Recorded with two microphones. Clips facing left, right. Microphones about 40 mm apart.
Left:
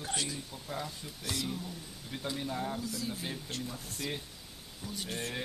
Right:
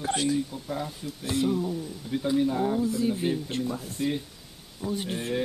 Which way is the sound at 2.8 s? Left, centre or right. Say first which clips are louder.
Right 12 dB; right.